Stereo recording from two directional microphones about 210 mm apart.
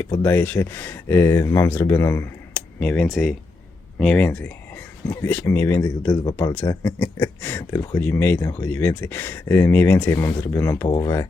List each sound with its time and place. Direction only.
0.2 s speech: 10° left (ahead or behind)
10.8 s speech: 25° left (ahead or behind)